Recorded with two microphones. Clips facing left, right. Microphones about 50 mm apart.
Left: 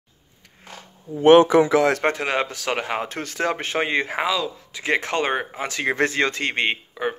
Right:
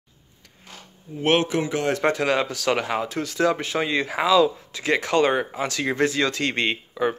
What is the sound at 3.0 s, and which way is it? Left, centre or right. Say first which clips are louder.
Speech: right 3 dB; left.